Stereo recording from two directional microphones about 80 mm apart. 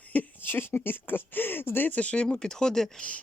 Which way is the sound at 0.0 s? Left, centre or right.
Centre.